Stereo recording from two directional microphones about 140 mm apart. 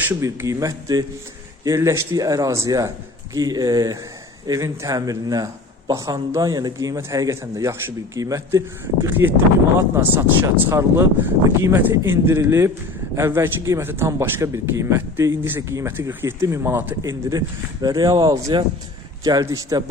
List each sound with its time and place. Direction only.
0.1 s speech: 20° right (ahead or behind)